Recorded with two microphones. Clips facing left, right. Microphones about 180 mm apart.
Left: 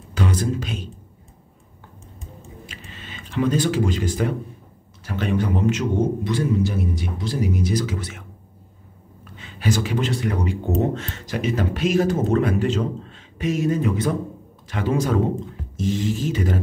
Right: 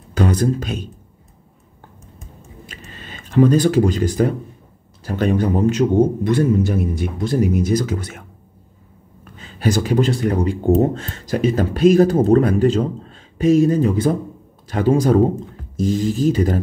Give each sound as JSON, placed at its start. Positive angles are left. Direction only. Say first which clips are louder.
{"t": 0.1, "sound": "speech", "louder": "right 6 dB", "side_deg": -45}
{"t": 2.7, "sound": "a sound", "louder": "right 2 dB", "side_deg": -40}
{"t": 5.0, "sound": "speech", "louder": "right 5 dB", "side_deg": -40}
{"t": 6.2, "sound": "speech", "louder": "right 5 dB", "side_deg": -55}